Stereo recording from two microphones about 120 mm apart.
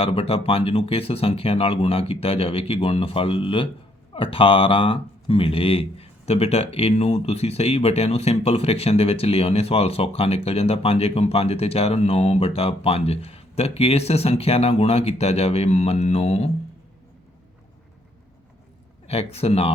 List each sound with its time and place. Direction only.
0.0 s speech: 55° left (ahead or behind)
19.0 s speech: 60° left (ahead or behind)